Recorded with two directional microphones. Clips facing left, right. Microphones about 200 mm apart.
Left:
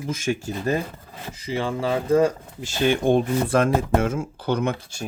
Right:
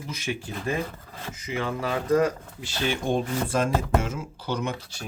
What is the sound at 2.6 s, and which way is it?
Speech, 45° left (ahead or behind).